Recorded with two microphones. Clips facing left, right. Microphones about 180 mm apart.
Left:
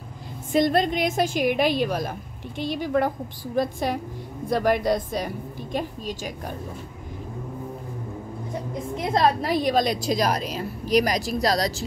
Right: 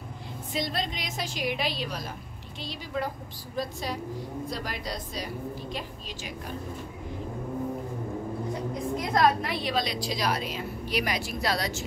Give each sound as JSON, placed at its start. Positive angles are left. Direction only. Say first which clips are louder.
{"t": 0.5, "sound": "a woman's voice", "louder": "left 11 dB", "side_deg": 50}
{"t": 8.9, "sound": "a woman's voice", "louder": "left 3 dB", "side_deg": 25}
{"t": 9.5, "sound": "a woman's voice", "louder": "left 8 dB", "side_deg": 45}